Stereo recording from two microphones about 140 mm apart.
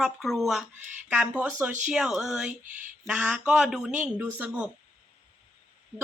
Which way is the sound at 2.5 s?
65° right (ahead or behind).